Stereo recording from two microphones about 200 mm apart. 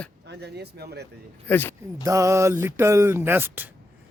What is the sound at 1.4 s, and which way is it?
Speech, 10° left (ahead or behind).